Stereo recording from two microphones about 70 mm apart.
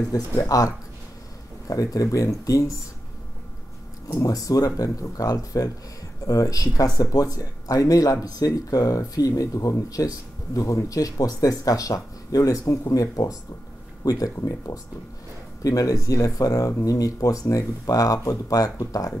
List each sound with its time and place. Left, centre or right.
0.1 s speech: left
4.1 s speech: left